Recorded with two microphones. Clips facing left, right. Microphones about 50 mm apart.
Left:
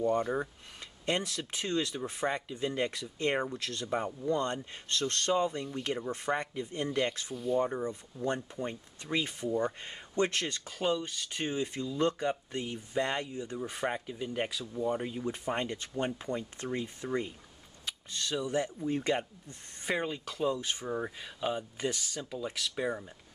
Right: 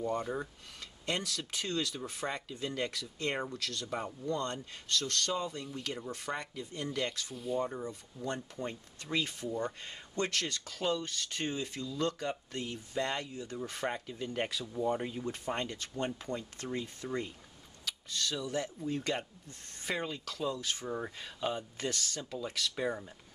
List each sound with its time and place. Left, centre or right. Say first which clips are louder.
1.0 s speech: left 3 dB; left
4.8 s speech: left 3 dB; left
7.3 s speech: left 5 dB; centre
7.6 s speech: left 5 dB; left
8.4 s speech: left 2 dB; centre
15.4 s speech: left 3 dB; centre
20.8 s speech: left 3 dB; centre